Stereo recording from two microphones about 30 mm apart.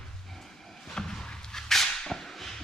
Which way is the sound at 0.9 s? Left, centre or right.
Left.